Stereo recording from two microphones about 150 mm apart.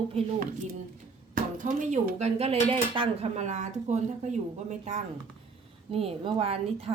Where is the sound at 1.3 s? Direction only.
60° right (ahead or behind).